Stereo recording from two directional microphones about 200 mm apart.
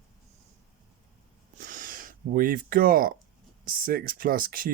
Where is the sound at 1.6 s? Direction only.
45° right (ahead or behind).